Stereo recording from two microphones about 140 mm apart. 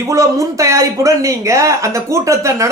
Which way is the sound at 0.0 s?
20° right (ahead or behind).